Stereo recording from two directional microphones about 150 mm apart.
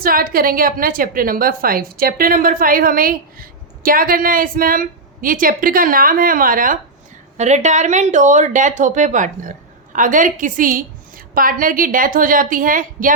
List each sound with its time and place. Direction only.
0.0 s a woman's voice: 75° right (ahead or behind)
7.3 s speech: 50° right (ahead or behind)